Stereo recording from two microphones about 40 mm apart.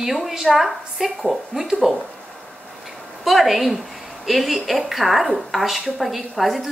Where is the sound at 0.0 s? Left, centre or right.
Centre.